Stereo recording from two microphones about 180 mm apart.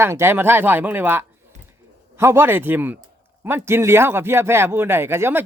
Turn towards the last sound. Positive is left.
turn(degrees=-15)  # may be behind; listen again after turning